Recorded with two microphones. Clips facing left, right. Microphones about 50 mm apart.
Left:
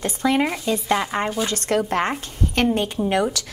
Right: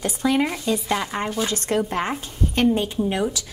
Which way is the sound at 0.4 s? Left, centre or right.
Centre.